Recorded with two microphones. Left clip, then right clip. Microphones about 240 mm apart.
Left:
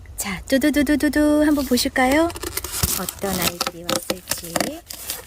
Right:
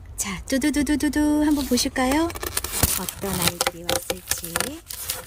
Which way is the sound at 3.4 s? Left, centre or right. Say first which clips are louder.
Even; right.